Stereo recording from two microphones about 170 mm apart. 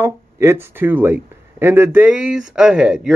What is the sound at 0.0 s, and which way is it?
Speech, 15° right (ahead or behind).